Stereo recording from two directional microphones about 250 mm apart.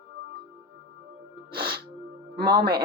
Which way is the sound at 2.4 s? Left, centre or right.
Right.